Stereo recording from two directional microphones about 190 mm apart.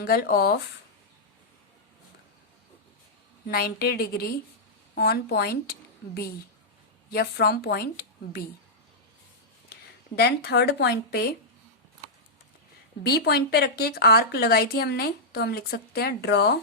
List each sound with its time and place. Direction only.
0.0 s speech: 55° left (ahead or behind)
3.5 s speech: 55° left (ahead or behind)
7.1 s speech: 55° left (ahead or behind)
10.2 s speech: 60° left (ahead or behind)
13.0 s speech: 60° left (ahead or behind)